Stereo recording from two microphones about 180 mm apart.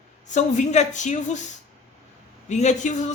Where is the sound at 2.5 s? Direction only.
40° left (ahead or behind).